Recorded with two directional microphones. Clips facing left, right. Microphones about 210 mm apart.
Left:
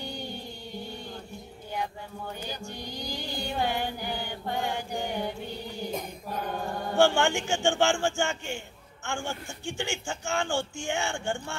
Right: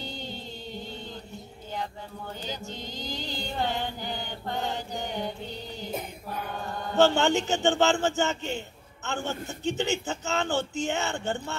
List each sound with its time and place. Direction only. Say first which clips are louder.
0.0 s music: left 1 dB; 20° right (ahead or behind)
2.4 s a man's voice: right 1 dB; 20° right (ahead or behind)
3.3 s child singing: left 1 dB; 15° left (ahead or behind)
4.6 s a man's voice: left 1 dB; 20° right (ahead or behind)
7.0 s a man's voice: right 2 dB; 20° right (ahead or behind)